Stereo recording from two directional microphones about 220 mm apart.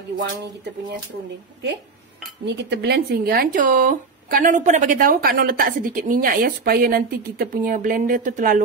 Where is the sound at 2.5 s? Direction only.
50° right (ahead or behind).